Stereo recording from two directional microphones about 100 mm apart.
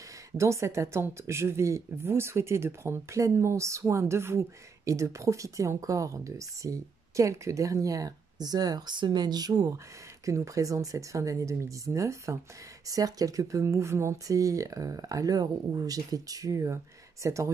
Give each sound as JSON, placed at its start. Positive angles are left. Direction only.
{"t": 0.4, "sound": "speech", "side_deg": -30}